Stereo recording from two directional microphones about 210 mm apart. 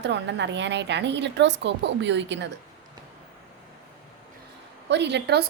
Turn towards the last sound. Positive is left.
turn(degrees=-50)  # may be behind; listen again after turning